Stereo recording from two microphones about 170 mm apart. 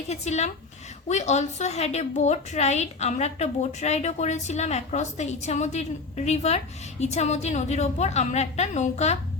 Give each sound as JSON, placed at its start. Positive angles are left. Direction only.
{"t": 0.1, "sound": "a woman's voice", "side_deg": 40}